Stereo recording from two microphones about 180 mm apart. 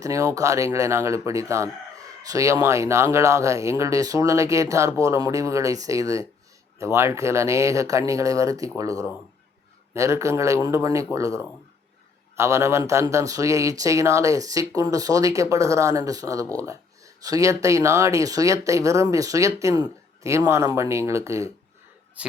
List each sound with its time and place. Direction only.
0.0 s speech: 15° right (ahead or behind)